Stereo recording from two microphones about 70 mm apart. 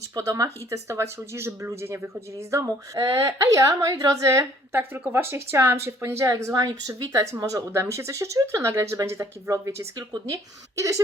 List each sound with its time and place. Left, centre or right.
0.2 s a woman's voice: right